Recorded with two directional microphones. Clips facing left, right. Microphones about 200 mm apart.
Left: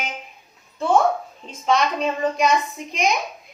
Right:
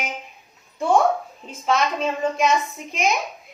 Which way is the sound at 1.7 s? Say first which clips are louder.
Left 1 dB; centre (ahead or behind).